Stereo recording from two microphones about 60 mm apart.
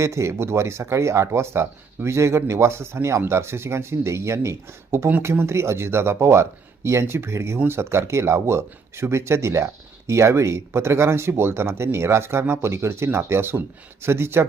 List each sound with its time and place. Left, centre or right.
0.0 s speech: right